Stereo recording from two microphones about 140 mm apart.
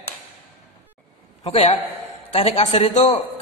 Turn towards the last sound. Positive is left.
turn(degrees=50)  # may be behind; listen again after turning